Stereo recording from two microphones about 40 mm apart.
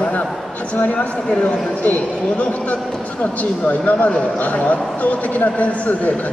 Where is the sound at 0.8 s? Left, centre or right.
Left.